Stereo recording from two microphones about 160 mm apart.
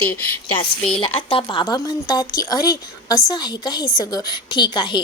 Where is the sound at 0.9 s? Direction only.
35° left (ahead or behind).